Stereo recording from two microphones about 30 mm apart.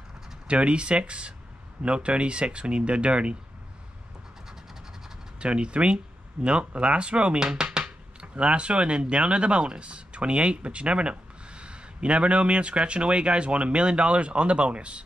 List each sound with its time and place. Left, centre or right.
0.5 s speech: right
5.4 s speech: right
7.6 s a sound: right
8.2 s speech: right